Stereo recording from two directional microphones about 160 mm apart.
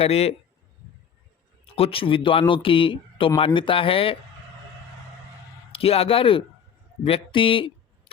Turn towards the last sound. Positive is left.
turn(degrees=30)  # may be behind; listen again after turning